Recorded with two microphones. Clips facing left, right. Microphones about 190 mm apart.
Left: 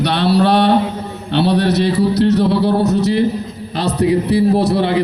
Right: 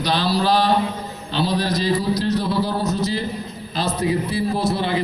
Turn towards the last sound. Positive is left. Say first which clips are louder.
# left 7 dB
turn(degrees=70)  # may be behind; listen again after turning